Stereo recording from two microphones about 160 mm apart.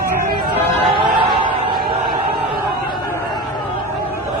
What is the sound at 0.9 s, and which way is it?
Music, 30° right (ahead or behind).